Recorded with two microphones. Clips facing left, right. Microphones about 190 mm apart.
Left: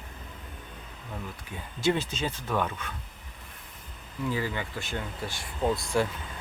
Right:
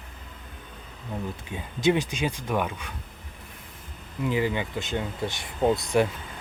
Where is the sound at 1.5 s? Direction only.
15° right (ahead or behind).